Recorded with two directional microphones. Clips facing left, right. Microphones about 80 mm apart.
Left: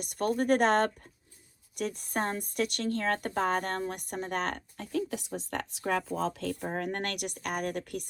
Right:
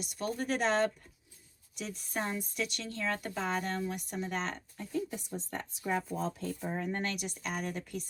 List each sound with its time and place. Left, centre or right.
0.0 s a woman's voice: left